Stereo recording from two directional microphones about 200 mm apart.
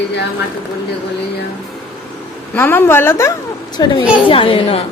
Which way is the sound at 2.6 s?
10° left (ahead or behind).